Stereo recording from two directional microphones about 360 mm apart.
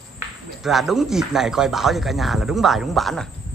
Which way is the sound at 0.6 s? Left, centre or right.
Centre.